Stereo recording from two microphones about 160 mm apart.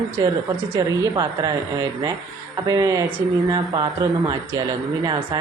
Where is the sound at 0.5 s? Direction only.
25° right (ahead or behind).